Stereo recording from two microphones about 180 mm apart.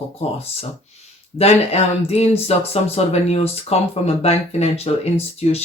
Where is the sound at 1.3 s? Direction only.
35° left (ahead or behind).